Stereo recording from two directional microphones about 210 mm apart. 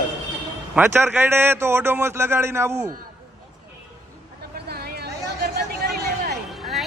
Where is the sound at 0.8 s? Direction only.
10° right (ahead or behind).